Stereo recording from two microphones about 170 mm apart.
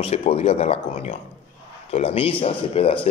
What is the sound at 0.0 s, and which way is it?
Speech, 35° left (ahead or behind).